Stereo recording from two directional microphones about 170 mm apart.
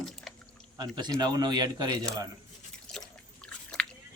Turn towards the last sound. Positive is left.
turn(degrees=5)  # may be behind; listen again after turning